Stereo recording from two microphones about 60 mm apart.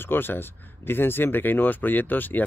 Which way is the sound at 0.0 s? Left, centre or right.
Left.